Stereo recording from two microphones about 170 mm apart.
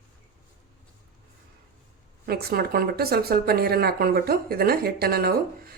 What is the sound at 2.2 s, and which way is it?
Speech, 60° right (ahead or behind).